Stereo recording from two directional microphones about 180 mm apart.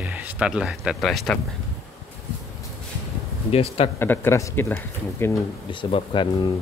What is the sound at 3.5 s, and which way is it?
Speech, 35° left (ahead or behind).